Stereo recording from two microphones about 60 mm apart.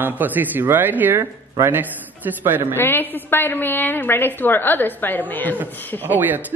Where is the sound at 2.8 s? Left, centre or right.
Left.